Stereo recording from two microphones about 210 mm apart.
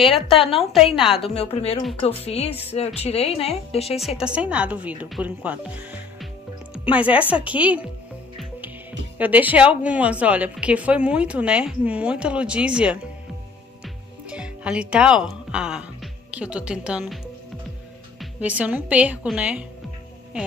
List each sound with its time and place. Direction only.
0.3 s a woman's voice: 25° left (ahead or behind)
0.9 s a woman's voice: centre (ahead or behind)
1.2 s a woman's voice: 25° left (ahead or behind)
4.2 s speech: 5° right (ahead or behind)
8.4 s music: 10° right (ahead or behind)
9.2 s a woman's voice: 10° right (ahead or behind)
13.8 s music: 5° right (ahead or behind)
18.2 s speech: 5° right (ahead or behind)